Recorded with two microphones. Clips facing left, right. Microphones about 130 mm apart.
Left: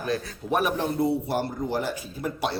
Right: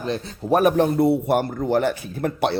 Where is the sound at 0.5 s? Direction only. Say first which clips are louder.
Right 8 dB; 55° right (ahead or behind).